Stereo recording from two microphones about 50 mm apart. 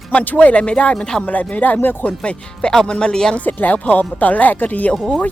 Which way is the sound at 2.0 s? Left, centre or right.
Centre.